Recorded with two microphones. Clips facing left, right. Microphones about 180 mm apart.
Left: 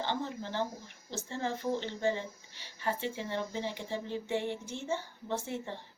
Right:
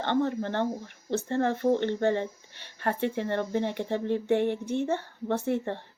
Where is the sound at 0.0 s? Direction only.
60° right (ahead or behind).